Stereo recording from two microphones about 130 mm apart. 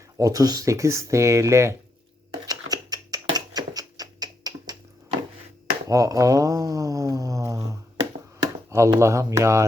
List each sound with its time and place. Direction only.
0.2 s speech: 25° right (ahead or behind)
2.5 s a sound: 30° right (ahead or behind)
5.9 s speech: 25° right (ahead or behind)
8.7 s speech: 20° right (ahead or behind)